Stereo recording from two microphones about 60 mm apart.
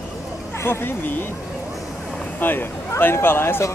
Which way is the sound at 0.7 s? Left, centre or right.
Left.